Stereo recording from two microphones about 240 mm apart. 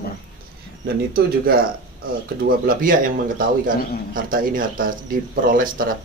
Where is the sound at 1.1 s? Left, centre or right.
Right.